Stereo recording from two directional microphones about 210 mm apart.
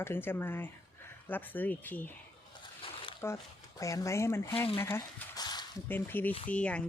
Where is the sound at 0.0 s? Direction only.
10° left (ahead or behind).